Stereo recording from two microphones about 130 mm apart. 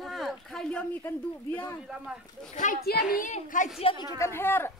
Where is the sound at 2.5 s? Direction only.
85° left.